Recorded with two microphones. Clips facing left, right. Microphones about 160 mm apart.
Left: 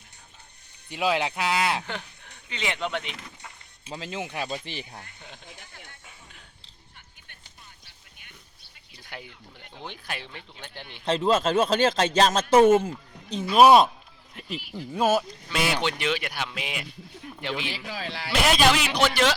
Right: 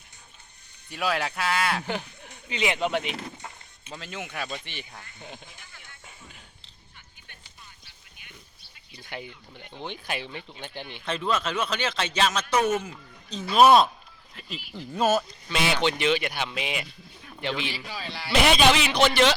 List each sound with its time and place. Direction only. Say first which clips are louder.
0.9 s speech: left 3 dB; 20° left (ahead or behind)
1.9 s speech: right 5 dB; 10° right (ahead or behind)
3.2 s a sound: right 6 dB; 35° right (ahead or behind)
3.8 s speech: left 4 dB; 30° left (ahead or behind)
8.9 s speech: right 4 dB; centre (ahead or behind)
11.0 s speech: left 5 dB; 35° left (ahead or behind)
12.5 s speech: left 8 dB; 30° left (ahead or behind)
13.5 s speech: left 1 dB; 10° left (ahead or behind)